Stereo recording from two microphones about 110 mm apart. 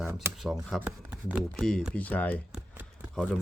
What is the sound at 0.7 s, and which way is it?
Speech, 15° right (ahead or behind).